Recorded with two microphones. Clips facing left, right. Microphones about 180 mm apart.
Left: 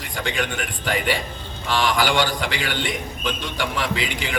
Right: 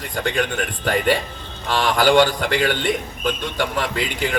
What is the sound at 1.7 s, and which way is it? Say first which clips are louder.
A man's voice: right 4 dB; 55° right (ahead or behind).